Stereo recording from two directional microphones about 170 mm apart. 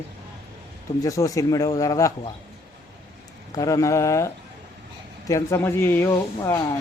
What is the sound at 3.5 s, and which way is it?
Speech, 20° left (ahead or behind).